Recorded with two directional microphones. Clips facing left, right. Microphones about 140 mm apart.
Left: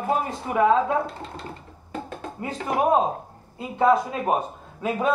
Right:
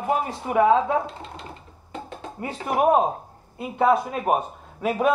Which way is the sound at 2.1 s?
20° right (ahead or behind).